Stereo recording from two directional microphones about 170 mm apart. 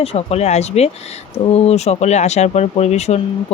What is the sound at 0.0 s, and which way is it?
Speech, 35° left (ahead or behind).